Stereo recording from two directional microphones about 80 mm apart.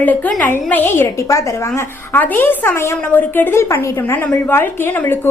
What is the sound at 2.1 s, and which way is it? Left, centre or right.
A woman's voice, left.